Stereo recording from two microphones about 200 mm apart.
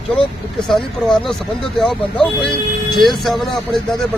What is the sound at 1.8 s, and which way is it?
Speech, centre (ahead or behind).